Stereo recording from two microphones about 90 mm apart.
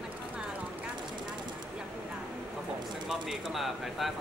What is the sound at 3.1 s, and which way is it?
Speech, 5° right (ahead or behind).